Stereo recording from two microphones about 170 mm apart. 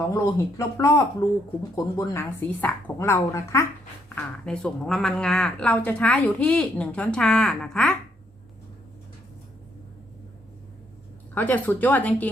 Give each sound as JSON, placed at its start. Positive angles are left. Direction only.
{"t": 0.0, "sound": "a woman's voice", "side_deg": 15}
{"t": 4.1, "sound": "a woman's voice", "side_deg": 5}
{"t": 11.3, "sound": "a woman's voice", "side_deg": 10}